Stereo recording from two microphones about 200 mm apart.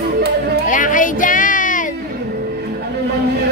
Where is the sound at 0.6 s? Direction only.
40° left (ahead or behind).